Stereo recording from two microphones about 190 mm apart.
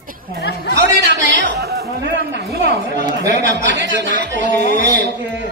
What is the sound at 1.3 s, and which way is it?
Chatter, 55° right (ahead or behind).